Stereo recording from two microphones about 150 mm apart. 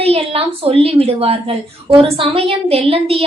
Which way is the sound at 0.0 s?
40° right (ahead or behind).